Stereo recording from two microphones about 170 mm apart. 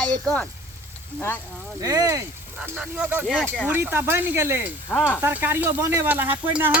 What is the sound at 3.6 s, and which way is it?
Speech, 10° right (ahead or behind).